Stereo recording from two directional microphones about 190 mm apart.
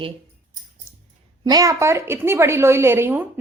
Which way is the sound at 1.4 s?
20° right (ahead or behind).